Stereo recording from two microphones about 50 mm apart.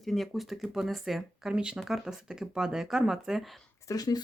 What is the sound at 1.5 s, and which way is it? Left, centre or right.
Speech, centre.